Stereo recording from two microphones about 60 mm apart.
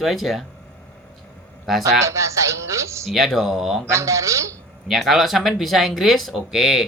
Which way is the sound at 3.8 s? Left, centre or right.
Right.